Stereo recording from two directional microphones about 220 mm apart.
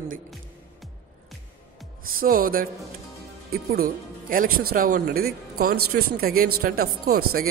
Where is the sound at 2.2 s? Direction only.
40° right (ahead or behind).